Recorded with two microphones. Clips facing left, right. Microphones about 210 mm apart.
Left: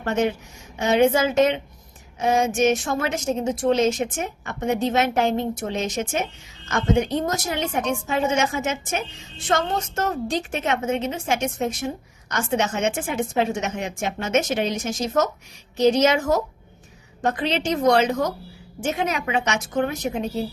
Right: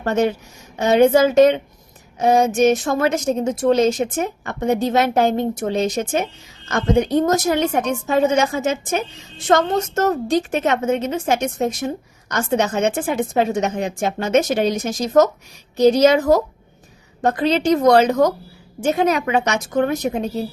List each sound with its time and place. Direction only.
0.0 s a woman's voice: 40° right (ahead or behind)